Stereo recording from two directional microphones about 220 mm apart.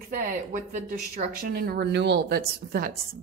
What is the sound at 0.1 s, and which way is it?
Speech, 40° right (ahead or behind).